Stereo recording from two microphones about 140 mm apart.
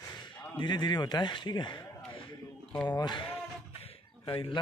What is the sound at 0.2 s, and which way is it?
A man's voice, 30° left (ahead or behind).